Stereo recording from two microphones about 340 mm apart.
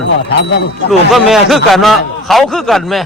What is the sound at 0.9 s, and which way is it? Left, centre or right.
Speech, centre.